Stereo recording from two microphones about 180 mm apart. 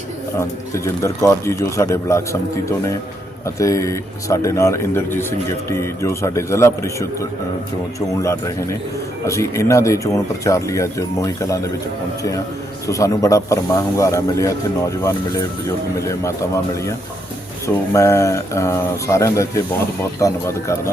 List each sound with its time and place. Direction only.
0.3 s a man's voice: 15° left (ahead or behind)
12.9 s a man's voice: 20° left (ahead or behind)
17.9 s a man's voice: 15° left (ahead or behind)